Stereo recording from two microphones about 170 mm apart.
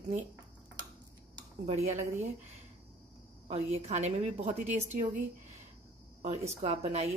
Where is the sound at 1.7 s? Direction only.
40° right (ahead or behind).